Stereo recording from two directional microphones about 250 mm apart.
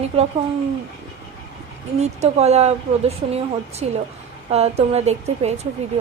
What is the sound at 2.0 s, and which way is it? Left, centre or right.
A woman's voice, right.